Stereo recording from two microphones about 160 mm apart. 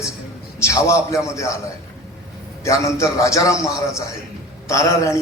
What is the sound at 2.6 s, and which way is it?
A man's voice, 20° left (ahead or behind).